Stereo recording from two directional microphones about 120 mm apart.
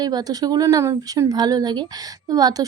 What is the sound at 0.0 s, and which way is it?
Speech, 35° right (ahead or behind).